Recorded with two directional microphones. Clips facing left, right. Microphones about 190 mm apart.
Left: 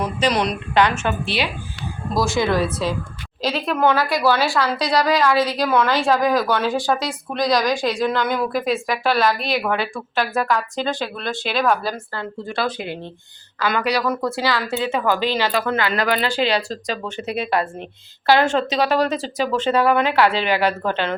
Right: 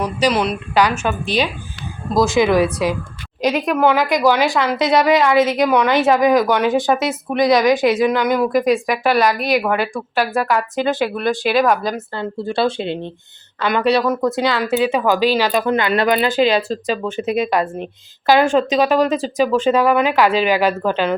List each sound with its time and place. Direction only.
0.2 s a woman's voice: 5° right (ahead or behind)
9.6 s a woman's voice: 5° right (ahead or behind)